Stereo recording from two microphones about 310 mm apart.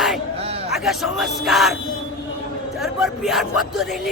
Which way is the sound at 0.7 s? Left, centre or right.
Centre.